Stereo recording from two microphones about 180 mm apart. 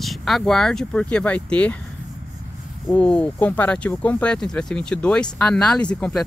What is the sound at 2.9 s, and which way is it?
Speech, 5° left (ahead or behind).